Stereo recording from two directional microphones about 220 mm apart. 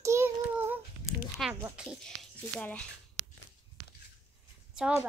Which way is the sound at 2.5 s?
5° left (ahead or behind).